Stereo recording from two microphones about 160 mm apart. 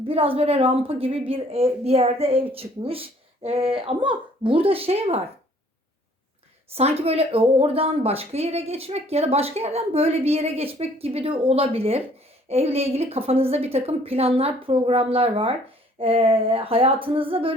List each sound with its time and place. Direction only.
0.1 s a woman's voice: 35° right (ahead or behind)
6.7 s a woman's voice: 40° right (ahead or behind)